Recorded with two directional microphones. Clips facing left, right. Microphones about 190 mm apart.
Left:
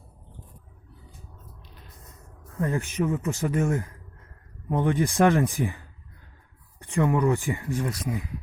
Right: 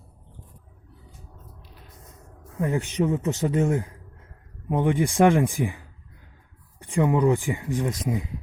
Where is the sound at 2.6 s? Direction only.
15° right (ahead or behind).